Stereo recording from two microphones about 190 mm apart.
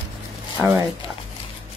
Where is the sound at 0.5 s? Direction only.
15° right (ahead or behind).